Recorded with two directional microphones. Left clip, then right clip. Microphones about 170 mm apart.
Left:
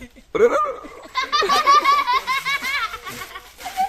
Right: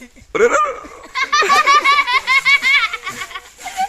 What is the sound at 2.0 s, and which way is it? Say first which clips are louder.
Baby laughter: right 6 dB; 90° left.